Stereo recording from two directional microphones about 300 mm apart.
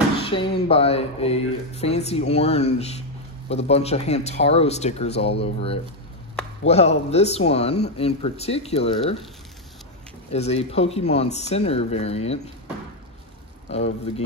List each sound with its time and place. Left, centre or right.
0.3 s speech: centre
10.3 s speech: left
13.7 s speech: left